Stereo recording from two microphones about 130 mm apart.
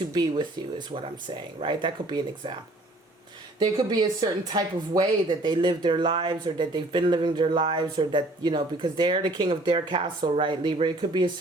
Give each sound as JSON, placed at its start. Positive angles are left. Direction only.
{"t": 0.1, "sound": "speech", "side_deg": -35}
{"t": 3.6, "sound": "speech", "side_deg": -30}